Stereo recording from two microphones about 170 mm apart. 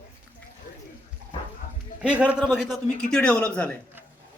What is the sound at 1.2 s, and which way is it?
Dog, 60° right (ahead or behind).